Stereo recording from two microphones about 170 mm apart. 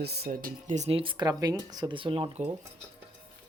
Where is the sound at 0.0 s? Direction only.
70° right (ahead or behind); by 2.4 s 30° right (ahead or behind).